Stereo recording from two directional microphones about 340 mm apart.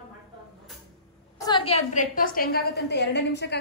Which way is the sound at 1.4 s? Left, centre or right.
Centre.